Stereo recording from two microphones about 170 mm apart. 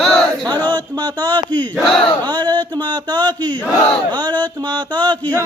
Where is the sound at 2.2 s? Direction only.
25° right (ahead or behind).